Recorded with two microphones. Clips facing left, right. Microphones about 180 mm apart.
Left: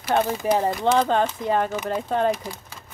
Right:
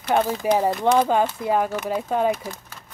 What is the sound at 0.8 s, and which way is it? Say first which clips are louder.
Speech: right 1 dB; 10° right (ahead or behind).